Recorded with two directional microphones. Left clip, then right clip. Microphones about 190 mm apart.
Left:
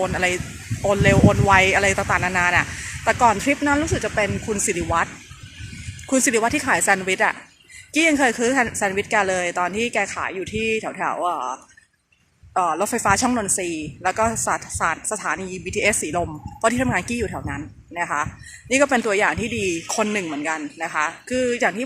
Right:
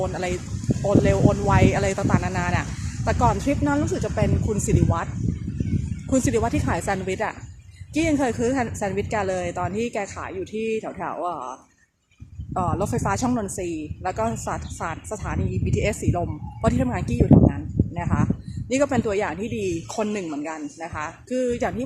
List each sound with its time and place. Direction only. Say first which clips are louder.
0.0 s a woman's voice: left 5 dB; centre (ahead or behind)
6.1 s a woman's voice: left 3 dB; centre (ahead or behind)
12.5 s a woman's voice: left 4 dB; centre (ahead or behind)